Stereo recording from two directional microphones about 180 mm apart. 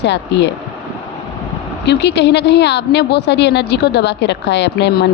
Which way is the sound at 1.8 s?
70° left (ahead or behind).